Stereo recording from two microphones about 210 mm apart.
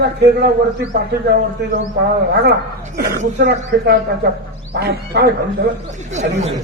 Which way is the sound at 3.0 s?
45° right (ahead or behind).